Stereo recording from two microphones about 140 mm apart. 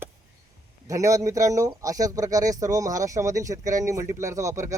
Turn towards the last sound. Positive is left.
turn(degrees=-20)  # may be behind; listen again after turning